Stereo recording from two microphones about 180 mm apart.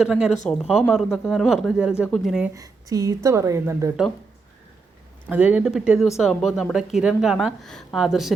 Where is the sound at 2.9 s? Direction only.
20° right (ahead or behind).